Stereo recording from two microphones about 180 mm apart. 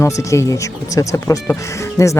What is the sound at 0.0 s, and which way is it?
Speech, 15° left (ahead or behind).